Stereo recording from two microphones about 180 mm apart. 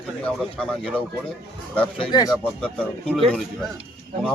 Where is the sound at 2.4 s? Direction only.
5° left (ahead or behind).